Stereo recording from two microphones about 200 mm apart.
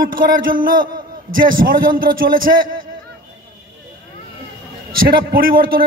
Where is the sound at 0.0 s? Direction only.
45° right (ahead or behind).